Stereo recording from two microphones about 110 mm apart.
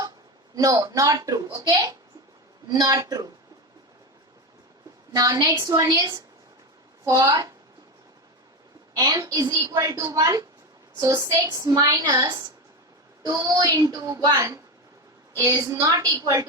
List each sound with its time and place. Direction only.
0.5 s a woman's voice: 30° right (ahead or behind)
5.1 s a woman's voice: 35° right (ahead or behind)
7.0 s a woman's voice: 30° right (ahead or behind)
9.0 s a woman's voice: 35° right (ahead or behind)
15.4 s a woman's voice: 30° right (ahead or behind)